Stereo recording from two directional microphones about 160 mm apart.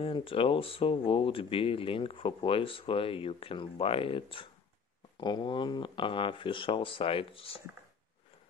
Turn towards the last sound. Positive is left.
turn(degrees=35)  # may be behind; listen again after turning